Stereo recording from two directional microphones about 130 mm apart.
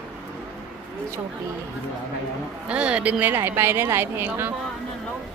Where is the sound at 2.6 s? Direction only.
10° right (ahead or behind).